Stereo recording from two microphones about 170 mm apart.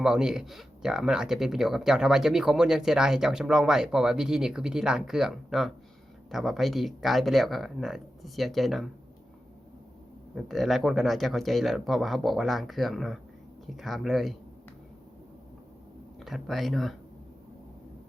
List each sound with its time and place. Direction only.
0.0 s speech: 5° right (ahead or behind)
10.3 s speech: centre (ahead or behind)
16.2 s speech: centre (ahead or behind)